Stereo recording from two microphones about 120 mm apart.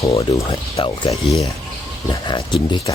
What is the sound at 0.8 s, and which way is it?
Speech, 45° left (ahead or behind).